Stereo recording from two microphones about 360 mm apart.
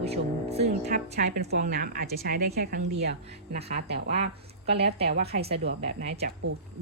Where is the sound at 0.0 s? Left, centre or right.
Centre.